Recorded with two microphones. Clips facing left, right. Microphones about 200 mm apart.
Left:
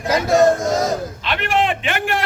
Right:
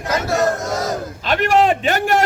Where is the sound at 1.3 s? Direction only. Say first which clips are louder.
Right 5 dB; 40° right (ahead or behind).